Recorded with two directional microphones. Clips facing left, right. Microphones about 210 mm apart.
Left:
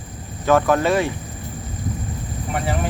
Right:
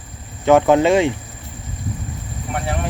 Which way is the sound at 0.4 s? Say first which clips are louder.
Right 4 dB; 20° right (ahead or behind).